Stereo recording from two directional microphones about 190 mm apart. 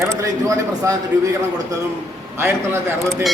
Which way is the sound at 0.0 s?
15° right (ahead or behind).